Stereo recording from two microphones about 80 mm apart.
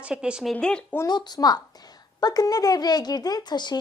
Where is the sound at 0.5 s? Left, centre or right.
Centre.